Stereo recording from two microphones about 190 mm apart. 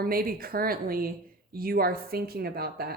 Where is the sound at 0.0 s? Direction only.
50° right (ahead or behind).